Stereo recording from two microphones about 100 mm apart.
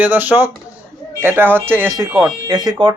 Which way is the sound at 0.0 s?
20° right (ahead or behind).